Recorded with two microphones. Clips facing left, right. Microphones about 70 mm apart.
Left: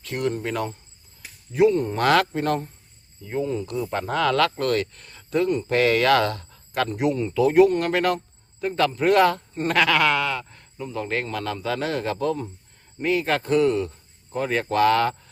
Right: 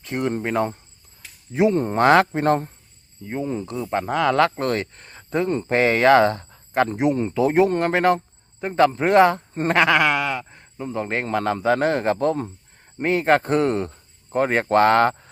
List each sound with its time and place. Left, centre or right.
0.0 s speech: right
1.2 s a sound: centre
1.7 s a man's voice: right